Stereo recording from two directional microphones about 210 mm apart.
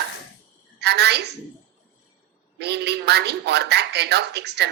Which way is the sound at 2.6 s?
50° right (ahead or behind).